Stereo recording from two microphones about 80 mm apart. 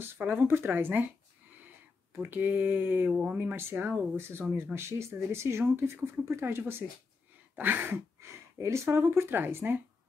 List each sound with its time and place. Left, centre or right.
0.0 s speech: right
2.1 s speech: right
3.1 s speech: centre
3.3 s speech: right
7.5 s a sound: right
8.5 s speech: right